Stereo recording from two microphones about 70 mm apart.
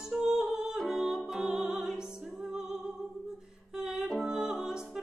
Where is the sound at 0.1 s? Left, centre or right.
Centre.